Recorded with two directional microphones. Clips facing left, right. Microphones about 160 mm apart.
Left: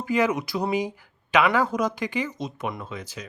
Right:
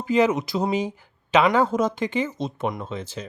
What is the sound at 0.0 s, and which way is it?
Speech, 20° right (ahead or behind).